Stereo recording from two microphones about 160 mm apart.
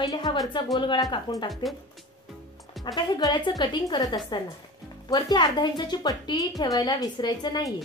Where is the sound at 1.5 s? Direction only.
Centre (ahead or behind).